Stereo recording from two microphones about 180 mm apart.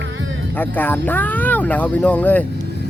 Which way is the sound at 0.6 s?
10° left (ahead or behind).